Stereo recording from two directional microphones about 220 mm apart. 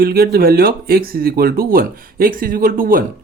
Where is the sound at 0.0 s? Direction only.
45° right (ahead or behind).